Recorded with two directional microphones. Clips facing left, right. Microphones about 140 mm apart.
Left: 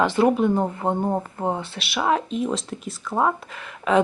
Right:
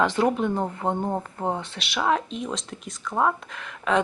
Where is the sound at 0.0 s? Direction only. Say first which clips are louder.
Left 3 dB; 5° left (ahead or behind).